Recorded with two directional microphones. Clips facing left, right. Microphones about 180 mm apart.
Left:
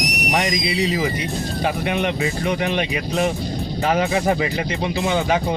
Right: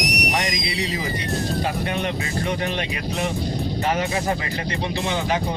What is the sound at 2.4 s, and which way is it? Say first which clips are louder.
Speech: left 2 dB; 30° right (ahead or behind).